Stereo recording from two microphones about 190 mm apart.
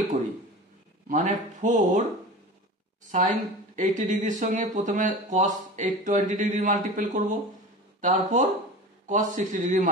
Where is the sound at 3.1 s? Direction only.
40° right (ahead or behind).